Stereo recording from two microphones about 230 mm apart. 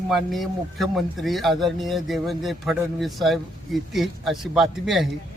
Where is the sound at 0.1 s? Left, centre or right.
Centre.